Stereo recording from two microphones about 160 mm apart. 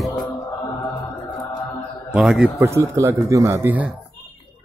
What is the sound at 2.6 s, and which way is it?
Speech, 20° right (ahead or behind).